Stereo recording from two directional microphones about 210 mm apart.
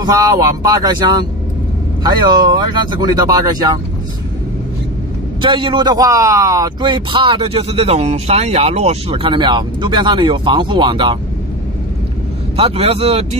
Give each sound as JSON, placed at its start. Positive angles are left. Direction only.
{"t": 0.0, "sound": "a man's voice", "side_deg": -15}
{"t": 5.4, "sound": "a man's voice", "side_deg": -25}
{"t": 12.5, "sound": "a man's voice", "side_deg": -30}